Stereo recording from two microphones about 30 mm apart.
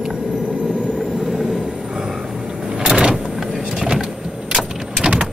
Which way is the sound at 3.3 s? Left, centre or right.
Centre.